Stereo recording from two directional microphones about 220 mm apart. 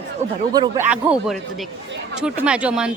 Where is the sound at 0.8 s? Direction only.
5° right (ahead or behind).